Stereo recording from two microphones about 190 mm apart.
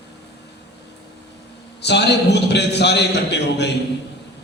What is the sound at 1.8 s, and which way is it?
A man's voice, 65° left (ahead or behind).